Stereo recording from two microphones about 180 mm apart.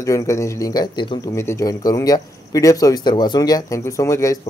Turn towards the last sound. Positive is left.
turn(degrees=15)  # may be behind; listen again after turning